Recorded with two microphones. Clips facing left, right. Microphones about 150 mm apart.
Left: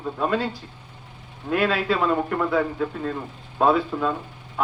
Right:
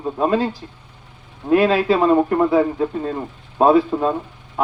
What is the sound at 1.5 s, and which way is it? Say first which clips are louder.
A man's voice: right 7 dB; 25° right (ahead or behind).